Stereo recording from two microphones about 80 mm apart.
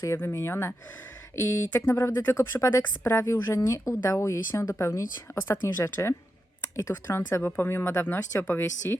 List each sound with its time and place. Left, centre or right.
0.0 s speech: left